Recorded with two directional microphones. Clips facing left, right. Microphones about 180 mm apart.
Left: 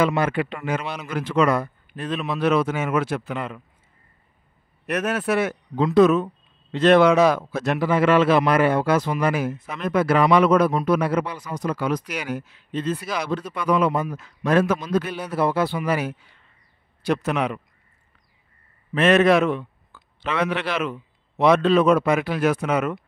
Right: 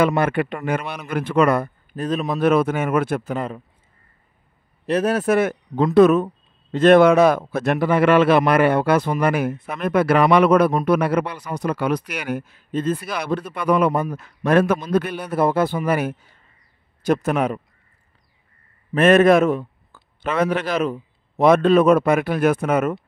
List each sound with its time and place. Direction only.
0.0 s a man's voice: 60° right (ahead or behind); by 3.6 s 40° right (ahead or behind)
4.8 s a man's voice: 30° right (ahead or behind)
18.9 s a man's voice: 50° right (ahead or behind)